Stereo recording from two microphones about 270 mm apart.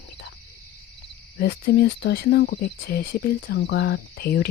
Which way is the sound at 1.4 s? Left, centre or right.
Left.